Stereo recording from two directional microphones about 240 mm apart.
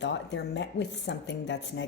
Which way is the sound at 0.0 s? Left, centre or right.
Left.